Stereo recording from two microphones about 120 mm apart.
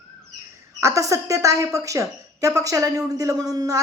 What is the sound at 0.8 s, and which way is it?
A woman's voice, 25° right (ahead or behind).